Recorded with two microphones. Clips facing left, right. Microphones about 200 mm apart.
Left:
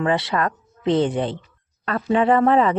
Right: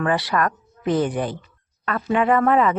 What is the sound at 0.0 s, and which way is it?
Speech, 25° left (ahead or behind).